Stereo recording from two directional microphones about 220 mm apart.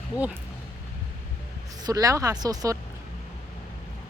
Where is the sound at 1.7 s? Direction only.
15° right (ahead or behind).